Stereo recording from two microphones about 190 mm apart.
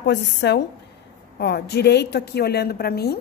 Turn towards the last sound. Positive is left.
turn(degrees=55)  # may be behind; listen again after turning